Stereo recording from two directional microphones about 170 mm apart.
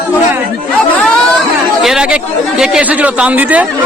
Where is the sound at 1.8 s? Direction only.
5° right (ahead or behind).